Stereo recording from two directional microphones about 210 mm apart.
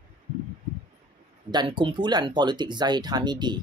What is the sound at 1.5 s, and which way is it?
Speech, 20° right (ahead or behind).